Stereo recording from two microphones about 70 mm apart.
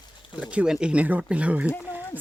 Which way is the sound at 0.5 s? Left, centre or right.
Centre.